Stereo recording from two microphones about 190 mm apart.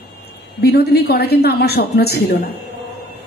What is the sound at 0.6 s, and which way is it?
A woman's voice, 60° left (ahead or behind).